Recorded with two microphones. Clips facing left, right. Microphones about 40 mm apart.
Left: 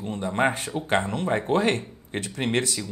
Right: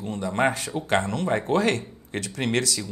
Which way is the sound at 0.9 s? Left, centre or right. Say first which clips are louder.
Right 1 dB; centre.